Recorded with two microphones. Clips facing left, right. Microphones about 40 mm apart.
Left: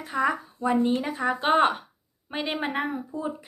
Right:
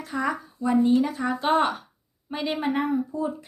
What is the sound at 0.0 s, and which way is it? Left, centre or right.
Speech, centre.